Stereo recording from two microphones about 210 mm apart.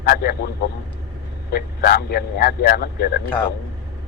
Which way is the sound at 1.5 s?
45° left (ahead or behind).